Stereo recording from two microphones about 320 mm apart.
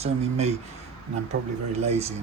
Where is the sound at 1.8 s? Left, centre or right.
Centre.